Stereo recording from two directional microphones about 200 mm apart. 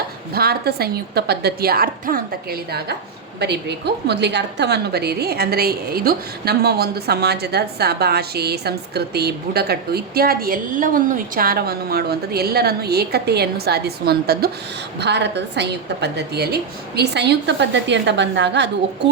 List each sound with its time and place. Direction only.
0.3 s a woman's voice: 50° right (ahead or behind)